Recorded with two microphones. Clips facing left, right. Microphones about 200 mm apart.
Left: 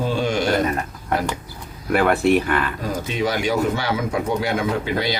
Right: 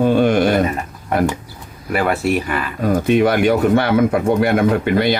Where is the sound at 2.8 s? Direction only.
55° right (ahead or behind).